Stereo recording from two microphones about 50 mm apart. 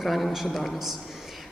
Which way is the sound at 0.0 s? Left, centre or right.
Centre.